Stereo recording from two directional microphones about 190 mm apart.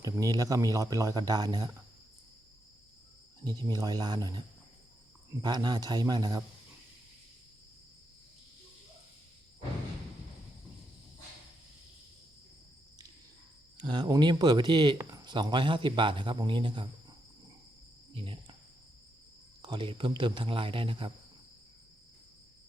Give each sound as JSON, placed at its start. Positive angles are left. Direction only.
{"t": 0.0, "sound": "speech", "side_deg": -20}
{"t": 3.6, "sound": "speech", "side_deg": -20}
{"t": 13.7, "sound": "speech", "side_deg": -25}
{"t": 18.1, "sound": "cricket", "side_deg": -25}
{"t": 19.6, "sound": "speech", "side_deg": -25}